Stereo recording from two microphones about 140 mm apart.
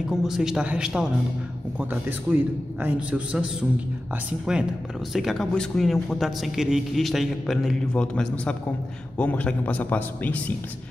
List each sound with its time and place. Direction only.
0.2 s a man's voice: 5° right (ahead or behind)
4.5 s a man's voice: 5° right (ahead or behind); by 10.4 s 10° left (ahead or behind)